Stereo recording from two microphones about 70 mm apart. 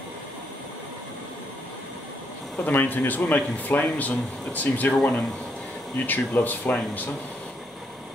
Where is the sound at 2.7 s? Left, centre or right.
Left.